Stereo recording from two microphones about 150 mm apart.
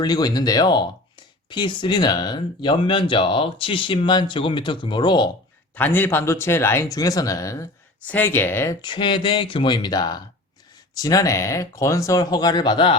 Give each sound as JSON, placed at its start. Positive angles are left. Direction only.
{"t": 0.0, "sound": "speech", "side_deg": 25}
{"t": 5.7, "sound": "speech", "side_deg": 15}
{"t": 8.8, "sound": "speech", "side_deg": 30}